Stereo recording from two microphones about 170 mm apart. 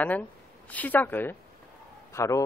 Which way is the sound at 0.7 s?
10° left (ahead or behind).